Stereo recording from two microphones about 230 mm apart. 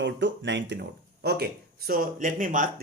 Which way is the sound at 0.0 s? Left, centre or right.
Right.